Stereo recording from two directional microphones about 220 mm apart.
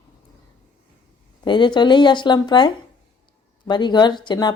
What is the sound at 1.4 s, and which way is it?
Speech, 20° left (ahead or behind).